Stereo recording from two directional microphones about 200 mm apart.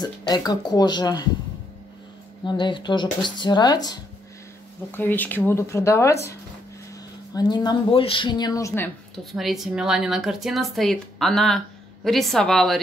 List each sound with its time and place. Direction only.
0.0 s speech: 20° left (ahead or behind)
2.4 s speech: 25° left (ahead or behind)
4.9 s speech: 10° left (ahead or behind)
7.3 s speech: 20° left (ahead or behind); by 12.7 s centre (ahead or behind)